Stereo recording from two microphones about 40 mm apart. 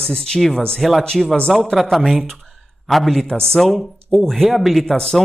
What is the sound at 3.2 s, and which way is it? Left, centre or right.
Speech, centre.